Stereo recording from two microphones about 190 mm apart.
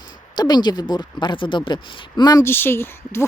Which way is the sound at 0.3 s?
20° left (ahead or behind).